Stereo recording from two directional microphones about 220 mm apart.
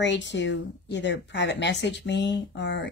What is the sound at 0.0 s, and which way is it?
A woman's voice, 55° left (ahead or behind).